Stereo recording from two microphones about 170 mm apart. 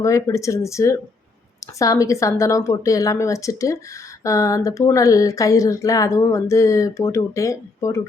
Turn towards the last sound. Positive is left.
turn(degrees=20)  # may be behind; listen again after turning